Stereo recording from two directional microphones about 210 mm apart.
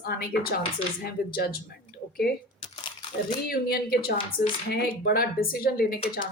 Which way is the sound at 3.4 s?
45° left (ahead or behind).